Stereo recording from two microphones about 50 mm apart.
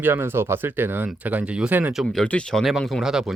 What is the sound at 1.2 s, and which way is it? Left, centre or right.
Speech, right.